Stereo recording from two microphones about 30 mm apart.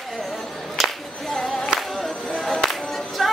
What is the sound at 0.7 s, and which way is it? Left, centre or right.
Singing, centre.